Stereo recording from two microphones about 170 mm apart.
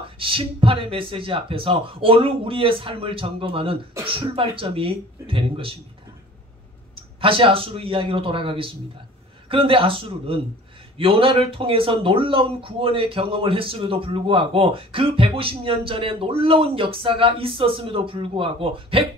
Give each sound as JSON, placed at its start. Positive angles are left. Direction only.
{"t": 0.2, "sound": "speech", "side_deg": -30}
{"t": 7.0, "sound": "speech", "side_deg": -30}